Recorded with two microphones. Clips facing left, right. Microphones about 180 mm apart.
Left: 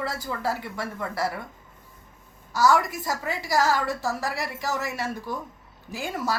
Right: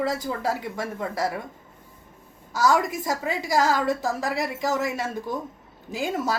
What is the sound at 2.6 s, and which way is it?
A woman's voice, 20° right (ahead or behind).